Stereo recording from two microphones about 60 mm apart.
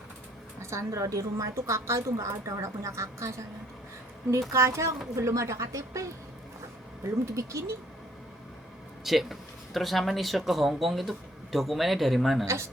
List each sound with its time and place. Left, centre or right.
0.6 s a woman's voice: right
7.3 s a woman's voice: right
9.0 s speech: centre